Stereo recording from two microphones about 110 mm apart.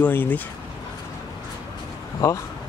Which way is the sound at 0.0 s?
15° left (ahead or behind).